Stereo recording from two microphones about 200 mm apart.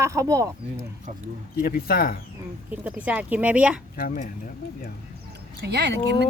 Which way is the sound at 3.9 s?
45° left (ahead or behind).